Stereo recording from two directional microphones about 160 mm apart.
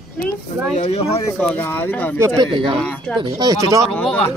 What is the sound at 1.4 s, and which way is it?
Speech, 10° left (ahead or behind).